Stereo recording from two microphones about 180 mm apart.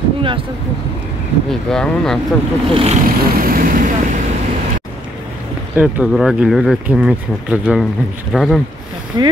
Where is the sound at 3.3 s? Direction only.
50° right (ahead or behind).